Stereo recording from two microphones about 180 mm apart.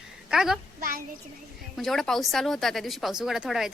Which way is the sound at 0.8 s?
55° right (ahead or behind).